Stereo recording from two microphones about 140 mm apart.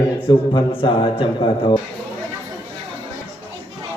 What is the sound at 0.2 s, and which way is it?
A man's voice, 40° left (ahead or behind).